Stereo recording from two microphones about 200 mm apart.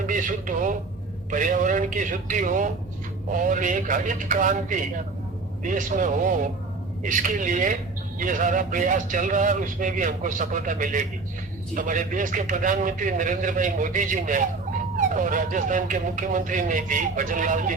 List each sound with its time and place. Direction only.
0.1 s speech: 40° right (ahead or behind)